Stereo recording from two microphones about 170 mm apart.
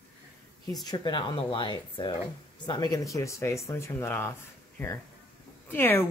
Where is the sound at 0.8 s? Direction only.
25° left (ahead or behind).